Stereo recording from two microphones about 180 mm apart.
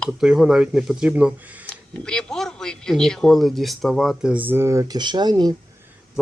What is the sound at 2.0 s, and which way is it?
Speech, 5° left (ahead or behind).